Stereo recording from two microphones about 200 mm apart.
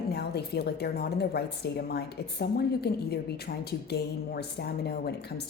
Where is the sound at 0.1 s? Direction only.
55° left (ahead or behind).